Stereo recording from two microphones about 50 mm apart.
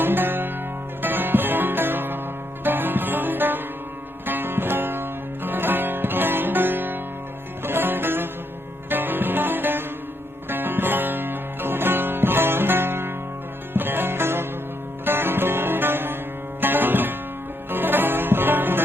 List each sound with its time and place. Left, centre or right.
0.0 s music: right